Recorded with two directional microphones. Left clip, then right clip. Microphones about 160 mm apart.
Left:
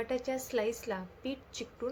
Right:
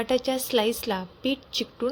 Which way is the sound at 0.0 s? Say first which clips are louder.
Right 9 dB; 50° right (ahead or behind).